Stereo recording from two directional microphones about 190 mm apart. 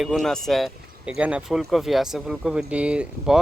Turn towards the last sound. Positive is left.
turn(degrees=-5)  # may be behind; listen again after turning